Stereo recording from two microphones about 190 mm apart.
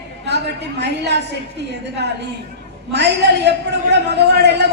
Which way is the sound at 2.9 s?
65° right (ahead or behind).